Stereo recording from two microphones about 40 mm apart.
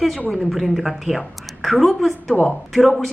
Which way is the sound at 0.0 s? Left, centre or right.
Centre.